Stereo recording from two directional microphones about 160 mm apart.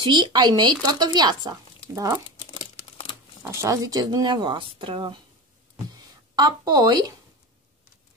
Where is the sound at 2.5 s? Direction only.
35° left (ahead or behind).